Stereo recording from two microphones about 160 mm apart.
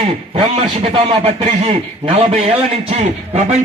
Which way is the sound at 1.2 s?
40° right (ahead or behind).